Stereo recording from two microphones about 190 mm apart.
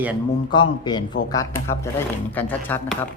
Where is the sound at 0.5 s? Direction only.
25° left (ahead or behind).